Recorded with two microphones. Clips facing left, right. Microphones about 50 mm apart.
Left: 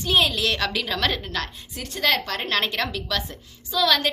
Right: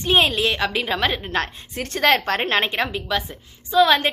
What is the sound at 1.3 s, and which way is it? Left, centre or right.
A woman's voice, right.